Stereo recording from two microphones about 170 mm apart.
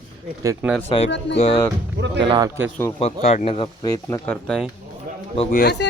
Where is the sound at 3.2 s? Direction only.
40° left (ahead or behind); by 4.6 s 10° left (ahead or behind).